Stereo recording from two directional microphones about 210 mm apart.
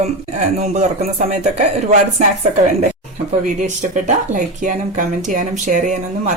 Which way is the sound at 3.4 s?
40° right (ahead or behind).